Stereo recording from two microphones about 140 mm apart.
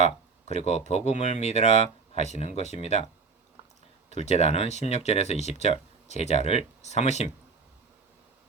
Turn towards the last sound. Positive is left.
turn(degrees=55)  # may be behind; listen again after turning